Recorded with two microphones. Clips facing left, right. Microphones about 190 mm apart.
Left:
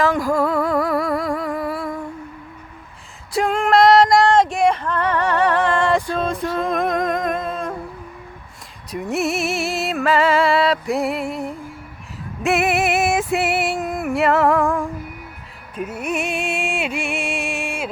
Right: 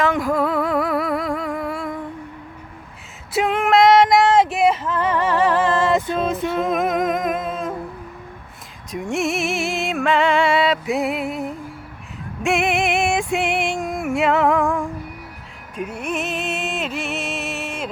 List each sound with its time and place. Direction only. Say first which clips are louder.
0.0 s music: left 1 dB; centre (ahead or behind)
3.3 s female singing: even; 5° right (ahead or behind)
6.6 s humming: even; 5° right (ahead or behind)
8.9 s music: left 1 dB; centre (ahead or behind)